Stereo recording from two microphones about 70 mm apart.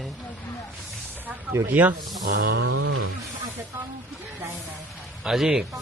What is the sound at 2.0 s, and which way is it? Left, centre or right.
Speech, right.